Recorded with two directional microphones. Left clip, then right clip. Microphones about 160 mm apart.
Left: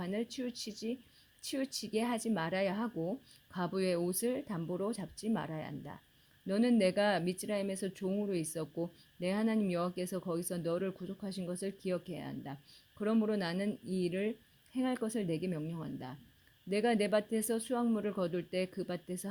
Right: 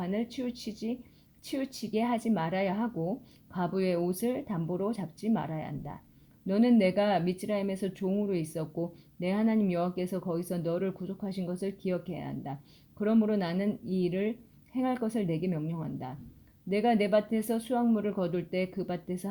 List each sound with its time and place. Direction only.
0.0 s speech: 55° left (ahead or behind)